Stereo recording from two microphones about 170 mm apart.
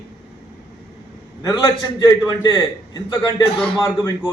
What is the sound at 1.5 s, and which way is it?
A man's voice, 20° left (ahead or behind).